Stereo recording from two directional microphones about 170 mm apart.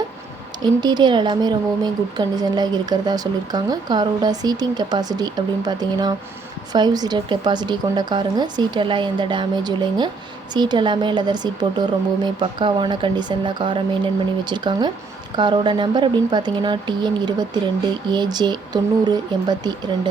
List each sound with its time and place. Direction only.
0.6 s a woman's voice: 25° right (ahead or behind)